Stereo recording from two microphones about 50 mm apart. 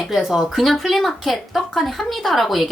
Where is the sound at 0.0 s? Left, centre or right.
Centre.